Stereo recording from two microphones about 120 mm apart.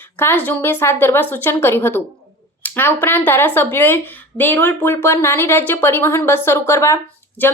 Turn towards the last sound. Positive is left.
turn(degrees=20)  # may be behind; listen again after turning